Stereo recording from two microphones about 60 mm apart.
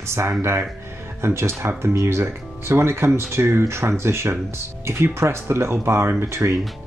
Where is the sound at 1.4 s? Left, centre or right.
Right.